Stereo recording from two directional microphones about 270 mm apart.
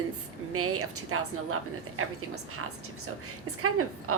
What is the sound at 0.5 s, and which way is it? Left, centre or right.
A woman's voice, right.